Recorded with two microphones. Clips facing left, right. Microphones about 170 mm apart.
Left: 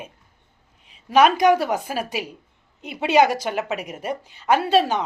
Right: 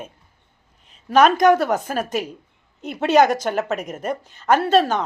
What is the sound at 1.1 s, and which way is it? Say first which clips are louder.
Speech: right 2 dB; 45° right (ahead or behind).